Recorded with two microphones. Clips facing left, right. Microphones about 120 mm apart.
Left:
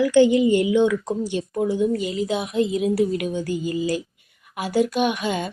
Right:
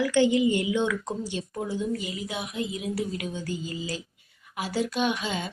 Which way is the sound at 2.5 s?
70° left (ahead or behind).